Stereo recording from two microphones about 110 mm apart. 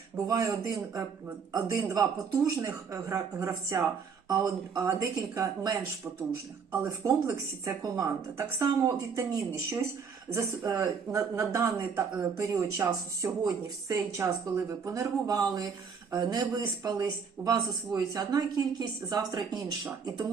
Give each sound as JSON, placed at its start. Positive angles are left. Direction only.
{"t": 0.3, "sound": "speech", "side_deg": -30}
{"t": 6.8, "sound": "speech", "side_deg": -30}